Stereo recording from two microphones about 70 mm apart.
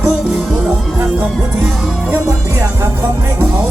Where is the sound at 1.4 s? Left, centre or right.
Right.